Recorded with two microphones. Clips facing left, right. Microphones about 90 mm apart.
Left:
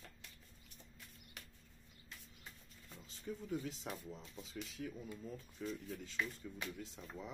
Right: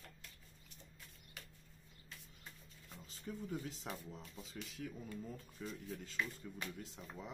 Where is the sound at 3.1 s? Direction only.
40° right (ahead or behind).